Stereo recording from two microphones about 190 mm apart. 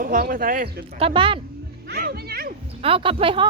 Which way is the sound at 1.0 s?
25° right (ahead or behind).